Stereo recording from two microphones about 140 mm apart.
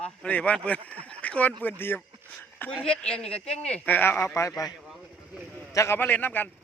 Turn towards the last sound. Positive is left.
turn(degrees=15)  # may be behind; listen again after turning